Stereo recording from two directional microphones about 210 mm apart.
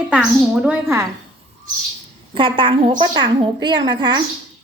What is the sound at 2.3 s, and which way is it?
A woman's voice, 25° right (ahead or behind).